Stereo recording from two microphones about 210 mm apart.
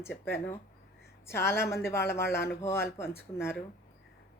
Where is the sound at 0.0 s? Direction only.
10° left (ahead or behind).